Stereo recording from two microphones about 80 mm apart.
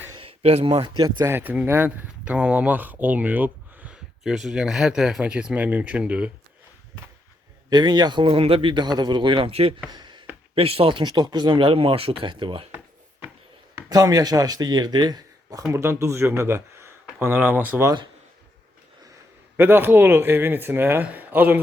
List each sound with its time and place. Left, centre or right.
0.9 s speech: right
1.3 s speech: right
4.2 s speech: centre
7.7 s speech: right
9.9 s a sound: right
10.8 s speech: right
11.1 s speech: right
12.7 s a sound: right
13.9 s speech: right
15.7 s speech: right
19.5 s speech: right